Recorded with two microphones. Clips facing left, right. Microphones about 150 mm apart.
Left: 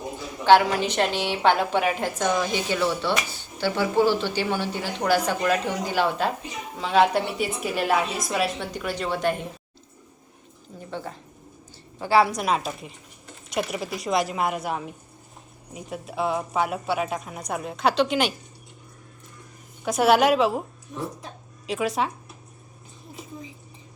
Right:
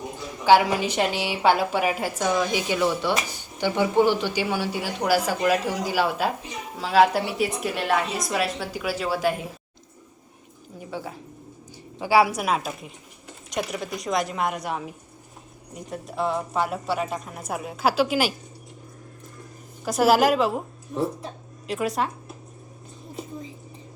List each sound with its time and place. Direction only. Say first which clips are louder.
0.4 s a woman's voice: even; 10° right (ahead or behind)
10.8 s a woman's voice: right 1 dB; 5° right (ahead or behind)
19.8 s a woman's voice: even; centre (ahead or behind)
20.9 s speech: right 6 dB; 35° right (ahead or behind)
21.7 s a woman's voice: even; centre (ahead or behind)